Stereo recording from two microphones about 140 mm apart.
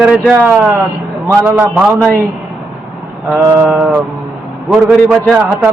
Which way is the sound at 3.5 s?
5° right (ahead or behind).